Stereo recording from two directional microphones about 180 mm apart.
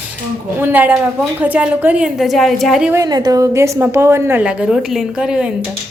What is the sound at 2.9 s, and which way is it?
A woman's voice, 20° right (ahead or behind).